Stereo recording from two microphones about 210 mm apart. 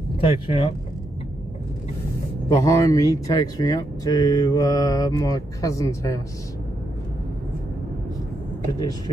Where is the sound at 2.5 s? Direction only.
15° left (ahead or behind).